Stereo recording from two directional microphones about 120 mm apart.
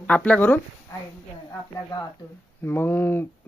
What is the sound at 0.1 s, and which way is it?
Speech, 10° left (ahead or behind).